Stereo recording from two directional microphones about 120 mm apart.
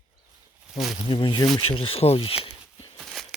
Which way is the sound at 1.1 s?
45° left (ahead or behind).